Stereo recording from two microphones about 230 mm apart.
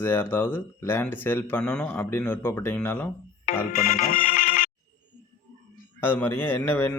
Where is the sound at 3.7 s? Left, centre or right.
Left.